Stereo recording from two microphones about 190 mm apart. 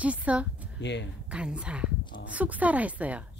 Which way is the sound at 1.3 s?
5° right (ahead or behind).